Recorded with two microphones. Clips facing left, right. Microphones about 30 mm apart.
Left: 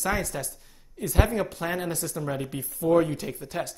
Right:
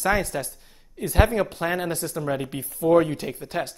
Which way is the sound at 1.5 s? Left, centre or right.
Right.